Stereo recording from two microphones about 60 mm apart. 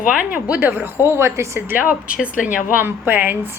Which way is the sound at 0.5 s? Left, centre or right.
Right.